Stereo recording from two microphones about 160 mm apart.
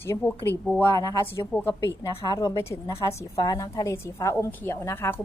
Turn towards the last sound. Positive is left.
turn(degrees=15)  # may be behind; listen again after turning